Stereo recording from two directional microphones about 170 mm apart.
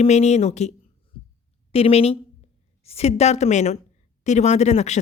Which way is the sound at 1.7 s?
35° left (ahead or behind).